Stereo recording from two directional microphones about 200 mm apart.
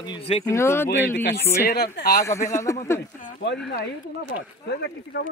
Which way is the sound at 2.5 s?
15° left (ahead or behind).